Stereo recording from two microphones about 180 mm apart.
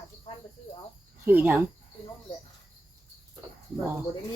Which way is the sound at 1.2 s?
10° right (ahead or behind).